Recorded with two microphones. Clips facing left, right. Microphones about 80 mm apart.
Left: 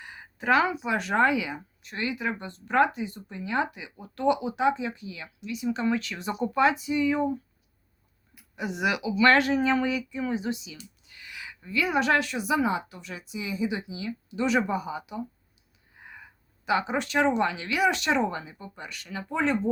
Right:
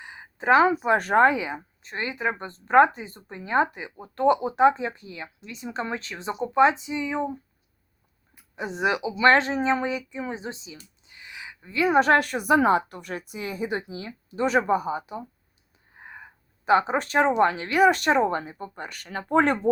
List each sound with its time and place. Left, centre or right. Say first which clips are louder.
0.0 s speech: right 3 dB; right
8.4 s speech: right 2 dB; right